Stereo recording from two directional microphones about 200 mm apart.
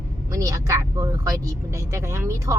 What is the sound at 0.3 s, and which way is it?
Speech, 15° right (ahead or behind).